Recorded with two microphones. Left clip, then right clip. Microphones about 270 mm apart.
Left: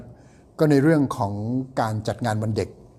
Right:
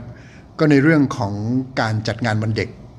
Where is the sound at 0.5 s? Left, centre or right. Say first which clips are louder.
Right 4 dB; centre.